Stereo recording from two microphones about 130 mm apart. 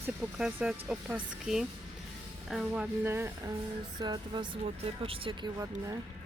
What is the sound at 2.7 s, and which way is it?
Speech, 15° right (ahead or behind).